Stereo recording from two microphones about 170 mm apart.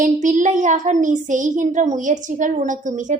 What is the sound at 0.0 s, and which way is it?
Speech, 50° right (ahead or behind).